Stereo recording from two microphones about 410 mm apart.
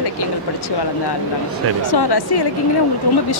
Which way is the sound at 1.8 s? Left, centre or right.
Left.